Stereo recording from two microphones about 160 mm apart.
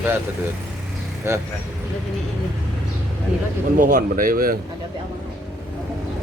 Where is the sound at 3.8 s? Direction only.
55° right (ahead or behind).